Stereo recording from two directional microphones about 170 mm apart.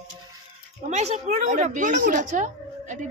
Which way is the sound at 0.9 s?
40° right (ahead or behind).